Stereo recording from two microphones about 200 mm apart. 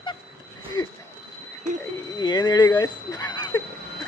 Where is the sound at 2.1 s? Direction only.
20° left (ahead or behind).